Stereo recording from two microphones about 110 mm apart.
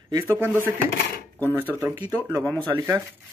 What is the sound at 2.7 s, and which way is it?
Speech, 25° right (ahead or behind).